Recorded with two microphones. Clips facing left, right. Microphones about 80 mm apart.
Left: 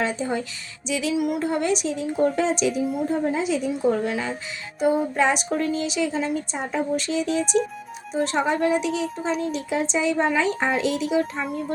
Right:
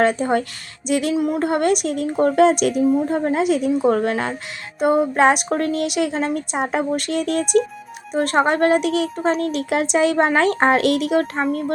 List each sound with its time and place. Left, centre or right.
0.0 s speech: right
1.1 s a woman's voice: right
1.5 s speech: right